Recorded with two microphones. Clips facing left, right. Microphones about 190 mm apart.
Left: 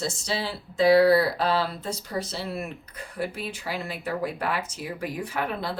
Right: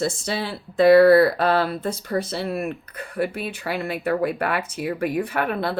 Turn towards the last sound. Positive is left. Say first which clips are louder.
# right 5 dB
turn(degrees=-60)  # may be behind; listen again after turning